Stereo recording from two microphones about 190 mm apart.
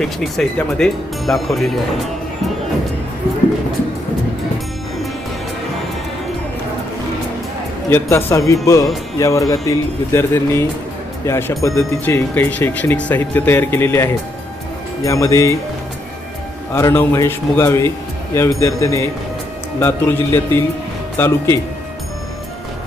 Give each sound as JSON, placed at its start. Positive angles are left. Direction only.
{"t": 0.0, "sound": "speech", "side_deg": 0}
{"t": 7.9, "sound": "speech", "side_deg": 10}
{"t": 16.7, "sound": "speech", "side_deg": 10}